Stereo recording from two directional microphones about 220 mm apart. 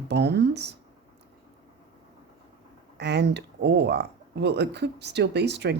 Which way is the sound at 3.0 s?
50° right (ahead or behind).